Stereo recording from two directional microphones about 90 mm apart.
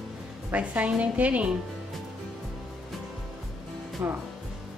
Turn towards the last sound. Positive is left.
turn(degrees=-25)  # may be behind; listen again after turning